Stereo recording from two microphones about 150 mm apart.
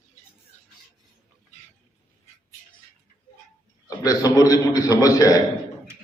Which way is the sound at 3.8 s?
25° left (ahead or behind).